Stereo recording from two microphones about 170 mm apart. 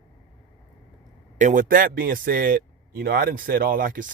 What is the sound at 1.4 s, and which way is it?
Speech, 50° right (ahead or behind).